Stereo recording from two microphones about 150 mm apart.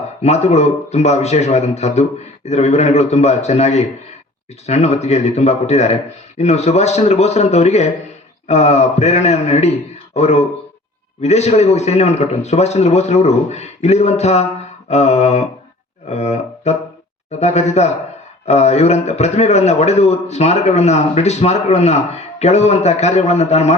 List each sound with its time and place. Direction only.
0.2 s a man's voice: 45° left (ahead or behind)